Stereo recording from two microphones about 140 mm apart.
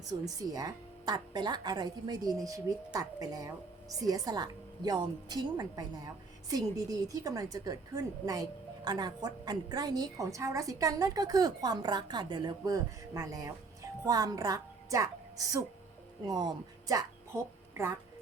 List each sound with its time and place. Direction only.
0.1 s a woman's voice: 25° right (ahead or behind)